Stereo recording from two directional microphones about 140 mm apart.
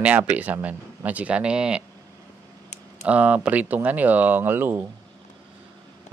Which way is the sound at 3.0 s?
10° right (ahead or behind).